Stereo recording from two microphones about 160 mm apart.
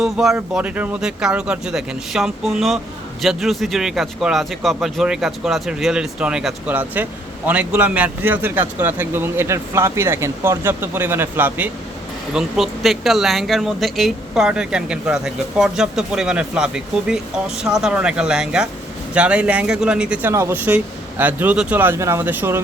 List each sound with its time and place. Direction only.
0.0 s speech: centre (ahead or behind)